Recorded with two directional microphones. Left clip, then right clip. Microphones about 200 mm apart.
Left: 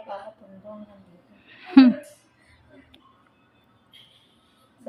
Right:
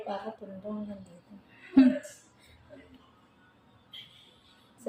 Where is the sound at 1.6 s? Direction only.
55° left (ahead or behind).